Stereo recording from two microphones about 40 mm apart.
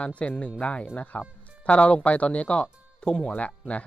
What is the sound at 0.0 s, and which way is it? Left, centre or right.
Speech, left.